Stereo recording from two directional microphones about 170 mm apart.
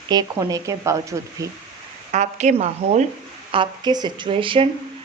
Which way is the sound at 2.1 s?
40° right (ahead or behind).